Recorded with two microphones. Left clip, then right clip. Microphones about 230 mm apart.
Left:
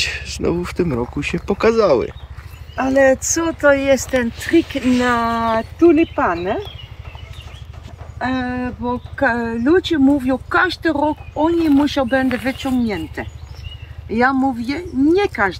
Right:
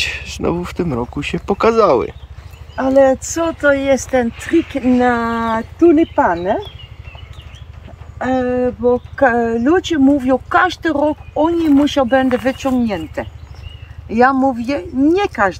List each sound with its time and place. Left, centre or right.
0.0 s speech: centre
2.7 s speech: right
8.2 s speech: right